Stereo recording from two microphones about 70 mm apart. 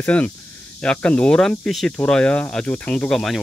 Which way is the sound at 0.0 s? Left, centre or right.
Left.